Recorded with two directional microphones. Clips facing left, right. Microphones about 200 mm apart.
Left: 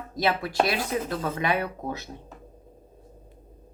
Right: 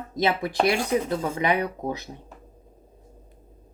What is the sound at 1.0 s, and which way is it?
Speech, 20° right (ahead or behind).